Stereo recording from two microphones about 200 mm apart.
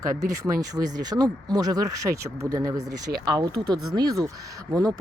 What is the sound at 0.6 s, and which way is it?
Speech, 15° right (ahead or behind).